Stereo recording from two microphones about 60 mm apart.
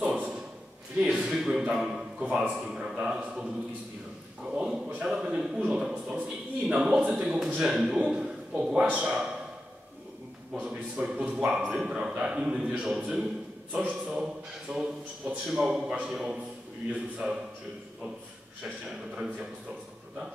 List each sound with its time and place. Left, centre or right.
0.0 s a sound: centre
2.2 s a man's voice: centre
4.5 s a man's voice: centre
10.6 s a man's voice: centre
18.9 s a man's voice: centre